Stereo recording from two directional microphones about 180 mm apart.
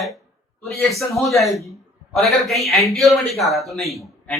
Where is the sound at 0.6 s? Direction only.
Centre (ahead or behind).